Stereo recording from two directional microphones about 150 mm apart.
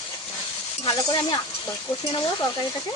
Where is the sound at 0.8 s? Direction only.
35° left (ahead or behind).